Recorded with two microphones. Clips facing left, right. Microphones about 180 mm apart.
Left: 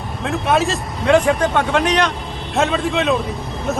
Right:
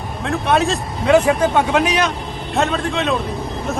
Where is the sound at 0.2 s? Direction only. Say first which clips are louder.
Even; centre (ahead or behind).